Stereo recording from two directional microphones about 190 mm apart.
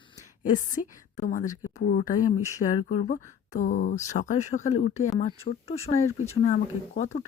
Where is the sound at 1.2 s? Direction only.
45° left (ahead or behind).